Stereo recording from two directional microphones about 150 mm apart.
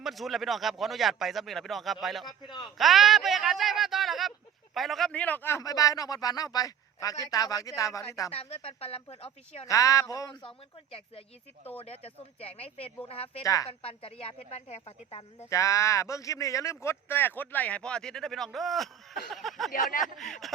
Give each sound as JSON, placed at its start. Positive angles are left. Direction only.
{"t": 0.0, "sound": "speech", "side_deg": 0}
{"t": 2.2, "sound": "speech", "side_deg": 30}
{"t": 2.7, "sound": "speech", "side_deg": 0}
{"t": 8.3, "sound": "speech", "side_deg": 40}
{"t": 9.6, "sound": "speech", "side_deg": 20}
{"t": 11.8, "sound": "speech", "side_deg": 40}
{"t": 13.4, "sound": "speech", "side_deg": 25}
{"t": 13.7, "sound": "speech", "side_deg": 40}
{"t": 15.4, "sound": "speech", "side_deg": 20}